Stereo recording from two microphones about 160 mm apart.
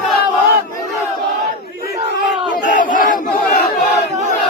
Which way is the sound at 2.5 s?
55° left (ahead or behind).